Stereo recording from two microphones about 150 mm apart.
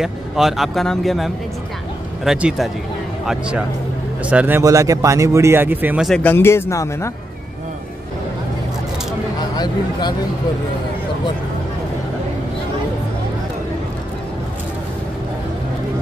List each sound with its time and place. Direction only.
0.0 s speech: centre (ahead or behind)
6.0 s speech: 5° left (ahead or behind)
6.3 s speech: 15° left (ahead or behind)
9.6 s speech: 30° left (ahead or behind)